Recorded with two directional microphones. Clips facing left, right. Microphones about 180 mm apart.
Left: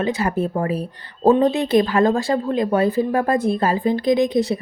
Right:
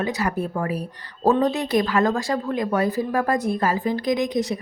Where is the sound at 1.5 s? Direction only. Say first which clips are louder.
Left 4 dB; 30° left (ahead or behind).